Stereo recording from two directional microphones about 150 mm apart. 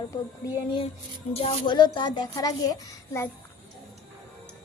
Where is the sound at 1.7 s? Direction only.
30° left (ahead or behind).